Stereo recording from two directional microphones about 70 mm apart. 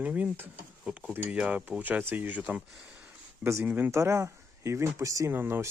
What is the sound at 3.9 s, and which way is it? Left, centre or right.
Speech, right.